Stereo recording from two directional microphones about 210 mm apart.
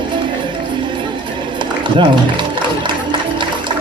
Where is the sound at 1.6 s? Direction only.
20° right (ahead or behind).